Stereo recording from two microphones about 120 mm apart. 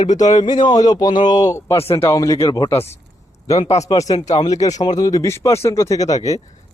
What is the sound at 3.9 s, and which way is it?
Speech, 30° left (ahead or behind).